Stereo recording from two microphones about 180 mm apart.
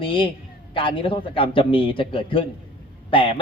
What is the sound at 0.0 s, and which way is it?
A man's voice, 30° left (ahead or behind).